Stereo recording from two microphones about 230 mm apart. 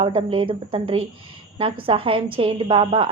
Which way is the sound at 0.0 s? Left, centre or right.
Right.